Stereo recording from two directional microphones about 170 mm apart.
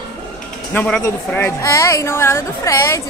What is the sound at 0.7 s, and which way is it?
A woman's voice, 10° left (ahead or behind).